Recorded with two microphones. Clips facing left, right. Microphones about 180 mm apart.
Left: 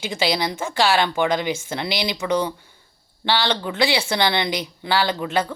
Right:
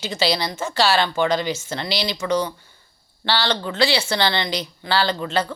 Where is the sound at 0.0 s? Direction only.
15° left (ahead or behind).